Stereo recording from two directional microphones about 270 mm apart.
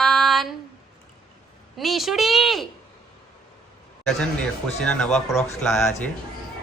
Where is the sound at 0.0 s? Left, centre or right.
Centre.